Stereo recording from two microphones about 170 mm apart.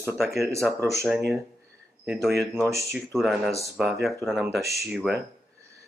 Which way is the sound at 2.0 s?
Centre (ahead or behind).